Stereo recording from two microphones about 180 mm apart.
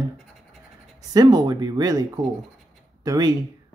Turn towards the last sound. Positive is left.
turn(degrees=-20)  # may be behind; listen again after turning